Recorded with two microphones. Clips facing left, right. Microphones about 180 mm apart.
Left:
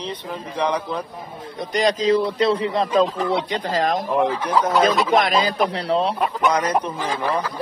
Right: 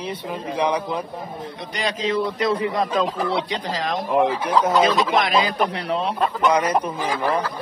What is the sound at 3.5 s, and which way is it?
Speech, 50° left (ahead or behind).